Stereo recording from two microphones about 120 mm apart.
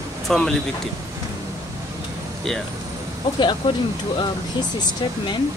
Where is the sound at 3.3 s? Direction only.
40° left (ahead or behind).